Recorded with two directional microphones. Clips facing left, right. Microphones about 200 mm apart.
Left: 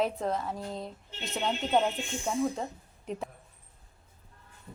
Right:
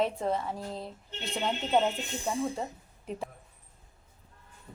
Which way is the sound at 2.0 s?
35° right (ahead or behind).